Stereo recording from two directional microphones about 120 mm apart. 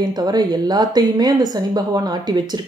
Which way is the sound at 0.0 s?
35° right (ahead or behind).